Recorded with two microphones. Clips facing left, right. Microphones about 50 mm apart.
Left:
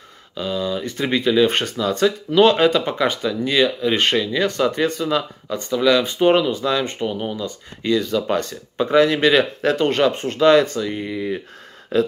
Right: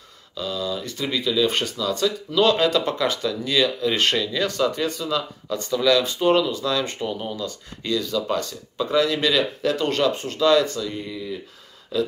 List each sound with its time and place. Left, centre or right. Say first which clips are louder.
0.3 s speech: left 4 dB; left
5.5 s speech: left 2 dB; centre
6.0 s speech: left 3 dB; left